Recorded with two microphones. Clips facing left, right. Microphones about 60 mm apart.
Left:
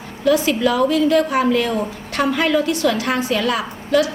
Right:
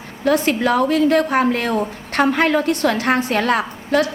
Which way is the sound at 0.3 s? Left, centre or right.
Right.